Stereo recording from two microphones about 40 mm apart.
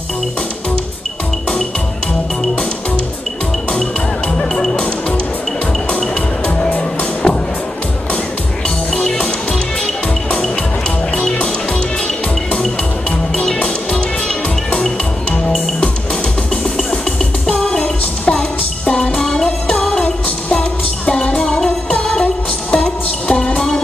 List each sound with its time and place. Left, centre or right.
5.9 s music: left
8.6 s music: left
17.6 s music: left
20.0 s music: left